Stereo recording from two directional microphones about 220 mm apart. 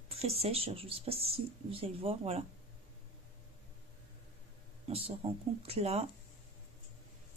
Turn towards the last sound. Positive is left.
turn(degrees=-30)  # may be behind; listen again after turning